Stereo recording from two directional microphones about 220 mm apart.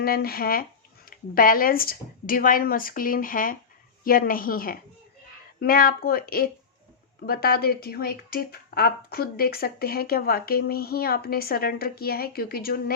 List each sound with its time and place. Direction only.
0.0 s speech: 45° left (ahead or behind)